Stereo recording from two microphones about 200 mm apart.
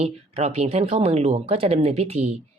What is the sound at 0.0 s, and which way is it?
Speech, 30° right (ahead or behind).